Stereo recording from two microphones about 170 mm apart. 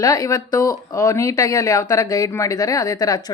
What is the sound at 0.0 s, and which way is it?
Speech, 20° left (ahead or behind).